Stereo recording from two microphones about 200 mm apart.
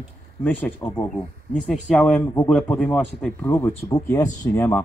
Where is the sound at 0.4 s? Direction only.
10° left (ahead or behind).